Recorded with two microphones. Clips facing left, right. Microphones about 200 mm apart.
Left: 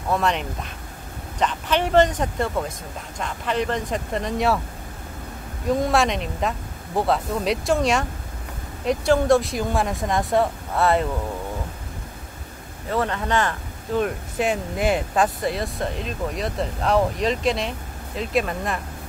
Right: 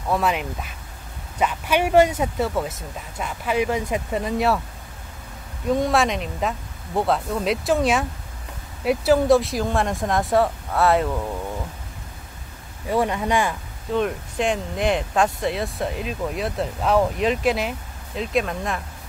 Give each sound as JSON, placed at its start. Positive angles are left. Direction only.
{"t": 0.1, "sound": "speech", "side_deg": -5}
{"t": 5.7, "sound": "speech", "side_deg": 0}
{"t": 12.8, "sound": "speech", "side_deg": -10}
{"t": 13.9, "sound": "speech", "side_deg": 5}